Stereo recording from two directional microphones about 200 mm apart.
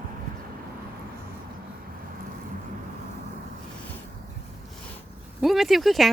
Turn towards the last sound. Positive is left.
turn(degrees=0)  # may be behind; listen again after turning